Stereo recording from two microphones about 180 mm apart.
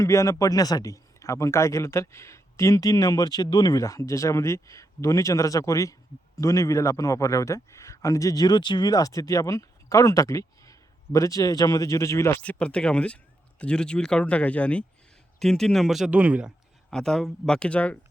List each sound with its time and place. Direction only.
0.0 s a man's voice: 15° left (ahead or behind); by 16.5 s 5° right (ahead or behind)
16.9 s speech: 5° left (ahead or behind)